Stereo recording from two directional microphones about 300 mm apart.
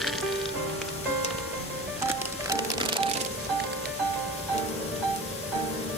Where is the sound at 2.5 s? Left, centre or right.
Centre.